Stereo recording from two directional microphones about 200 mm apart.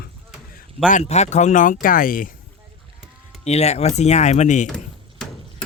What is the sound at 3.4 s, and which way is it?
Speech, 30° left (ahead or behind).